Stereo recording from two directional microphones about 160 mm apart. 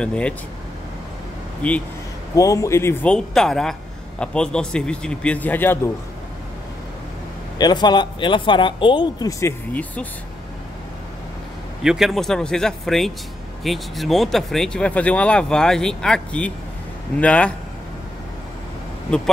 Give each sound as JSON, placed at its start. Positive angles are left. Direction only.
{"t": 0.0, "sound": "speech", "side_deg": 5}
{"t": 1.6, "sound": "speech", "side_deg": 5}
{"t": 2.3, "sound": "speech", "side_deg": 20}
{"t": 7.5, "sound": "speech", "side_deg": 25}
{"t": 9.4, "sound": "speech", "side_deg": 10}
{"t": 11.8, "sound": "speech", "side_deg": -5}
{"t": 19.0, "sound": "speech", "side_deg": 5}